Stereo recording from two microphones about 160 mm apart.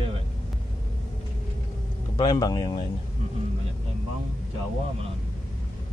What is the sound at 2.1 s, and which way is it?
Speech, 25° left (ahead or behind).